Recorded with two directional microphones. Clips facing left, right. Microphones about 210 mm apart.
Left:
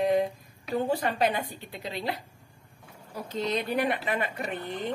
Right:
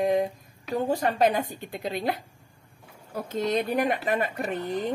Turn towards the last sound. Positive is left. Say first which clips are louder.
# right 4 dB
turn(degrees=-40)  # may be behind; listen again after turning